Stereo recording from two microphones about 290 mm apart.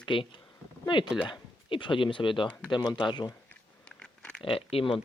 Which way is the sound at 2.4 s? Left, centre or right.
Centre.